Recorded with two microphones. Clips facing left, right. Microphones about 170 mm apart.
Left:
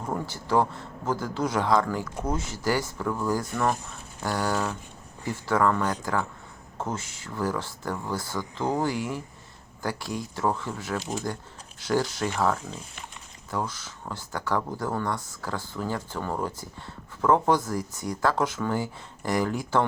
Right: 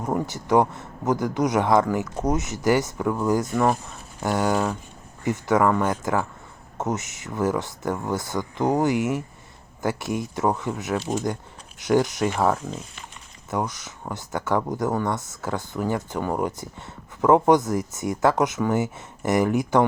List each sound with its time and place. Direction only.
0.0 s speech: 20° right (ahead or behind)